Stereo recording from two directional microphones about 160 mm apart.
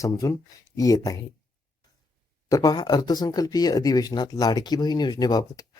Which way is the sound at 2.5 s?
25° left (ahead or behind).